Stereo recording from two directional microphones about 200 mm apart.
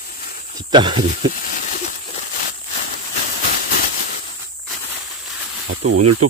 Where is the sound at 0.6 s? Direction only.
20° right (ahead or behind).